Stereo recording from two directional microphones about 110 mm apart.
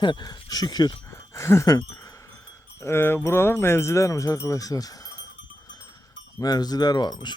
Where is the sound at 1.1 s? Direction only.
25° left (ahead or behind).